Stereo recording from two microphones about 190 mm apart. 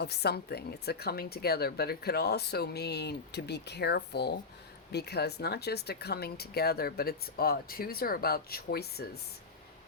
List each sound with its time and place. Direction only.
0.0 s a woman's voice: 60° left (ahead or behind)